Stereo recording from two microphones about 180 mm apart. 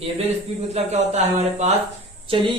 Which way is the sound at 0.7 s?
40° right (ahead or behind).